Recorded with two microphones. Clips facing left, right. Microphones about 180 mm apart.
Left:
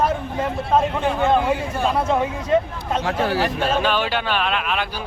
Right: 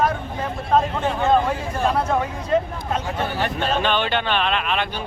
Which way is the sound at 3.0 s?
90° left.